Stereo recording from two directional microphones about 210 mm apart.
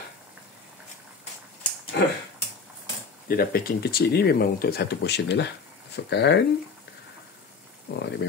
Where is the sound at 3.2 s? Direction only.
45° left (ahead or behind).